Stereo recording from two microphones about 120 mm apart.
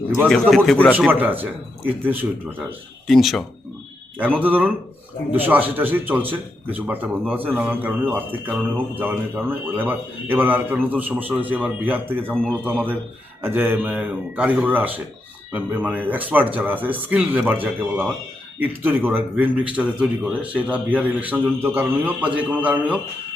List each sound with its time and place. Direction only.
0.5 s a man's voice: 5° left (ahead or behind)
1.2 s speech: 15° right (ahead or behind)
3.1 s a man's voice: centre (ahead or behind)
4.4 s speech: 15° right (ahead or behind)
12.3 s speech: 10° left (ahead or behind)
12.6 s speech: 15° right (ahead or behind)